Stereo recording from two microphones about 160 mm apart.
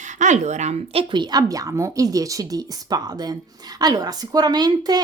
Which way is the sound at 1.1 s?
25° right (ahead or behind).